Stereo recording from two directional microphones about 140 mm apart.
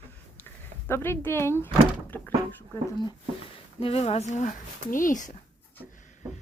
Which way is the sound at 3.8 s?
45° left (ahead or behind).